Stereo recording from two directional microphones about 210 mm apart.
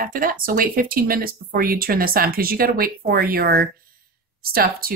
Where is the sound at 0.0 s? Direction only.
40° right (ahead or behind).